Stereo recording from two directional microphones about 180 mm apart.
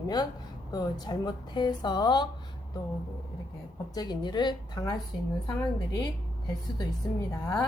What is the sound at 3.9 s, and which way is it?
A woman's voice, 20° left (ahead or behind).